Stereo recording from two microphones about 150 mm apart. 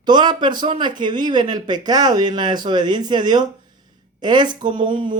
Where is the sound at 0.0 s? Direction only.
30° right (ahead or behind).